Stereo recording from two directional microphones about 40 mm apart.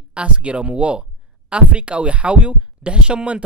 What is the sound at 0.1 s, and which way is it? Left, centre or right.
Speech, right.